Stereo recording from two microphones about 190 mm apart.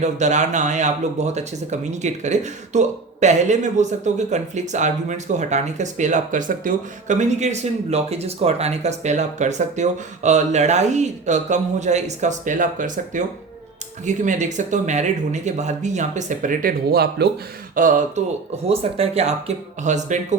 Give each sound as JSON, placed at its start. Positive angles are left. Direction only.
{"t": 0.0, "sound": "speech", "side_deg": -40}
{"t": 17.7, "sound": "speech", "side_deg": -45}
{"t": 18.7, "sound": "speech", "side_deg": -30}